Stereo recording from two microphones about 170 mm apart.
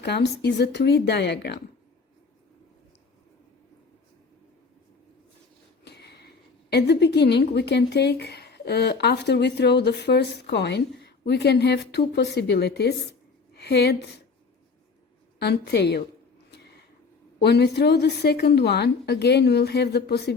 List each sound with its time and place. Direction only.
0.0 s speech: 80° left
5.8 s a woman's voice: 75° left (ahead or behind)
15.4 s a woman's voice: 75° left (ahead or behind)
17.4 s a woman's voice: 75° left (ahead or behind)